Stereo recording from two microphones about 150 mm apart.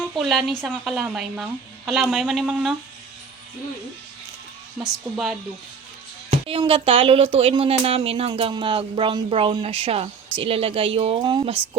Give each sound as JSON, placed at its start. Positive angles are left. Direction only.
{"t": 0.2, "sound": "a woman's voice", "side_deg": 0}
{"t": 4.8, "sound": "a woman's voice", "side_deg": 0}
{"t": 6.5, "sound": "speech", "side_deg": -40}